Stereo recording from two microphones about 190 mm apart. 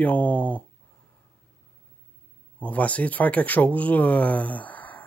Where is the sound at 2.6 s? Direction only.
10° left (ahead or behind).